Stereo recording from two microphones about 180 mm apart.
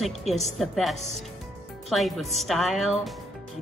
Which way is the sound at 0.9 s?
35° right (ahead or behind).